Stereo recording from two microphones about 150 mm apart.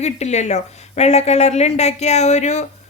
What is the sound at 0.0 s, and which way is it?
A woman's voice, 50° left (ahead or behind).